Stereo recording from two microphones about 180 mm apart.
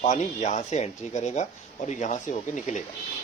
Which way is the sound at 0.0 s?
40° left (ahead or behind).